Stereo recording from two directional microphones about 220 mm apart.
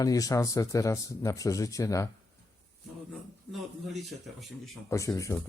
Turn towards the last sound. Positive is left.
turn(degrees=15)  # may be behind; listen again after turning